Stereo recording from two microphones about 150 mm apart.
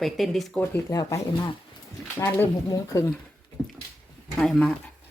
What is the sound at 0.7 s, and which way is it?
Speech, 20° left (ahead or behind).